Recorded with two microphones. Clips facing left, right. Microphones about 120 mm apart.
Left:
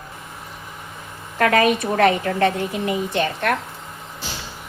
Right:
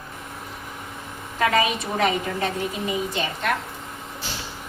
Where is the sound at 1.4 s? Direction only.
60° left (ahead or behind).